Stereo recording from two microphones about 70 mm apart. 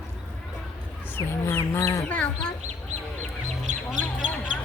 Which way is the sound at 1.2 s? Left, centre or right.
Left.